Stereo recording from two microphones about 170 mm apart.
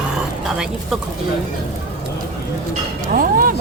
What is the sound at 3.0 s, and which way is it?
Speech, 55° right (ahead or behind).